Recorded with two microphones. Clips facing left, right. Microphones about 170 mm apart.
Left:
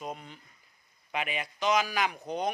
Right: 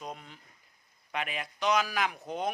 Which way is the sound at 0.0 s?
Centre (ahead or behind).